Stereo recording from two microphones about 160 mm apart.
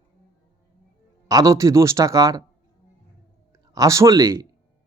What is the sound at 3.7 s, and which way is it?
Speech, 20° right (ahead or behind).